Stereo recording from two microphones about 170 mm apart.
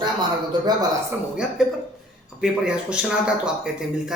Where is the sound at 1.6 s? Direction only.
Centre (ahead or behind).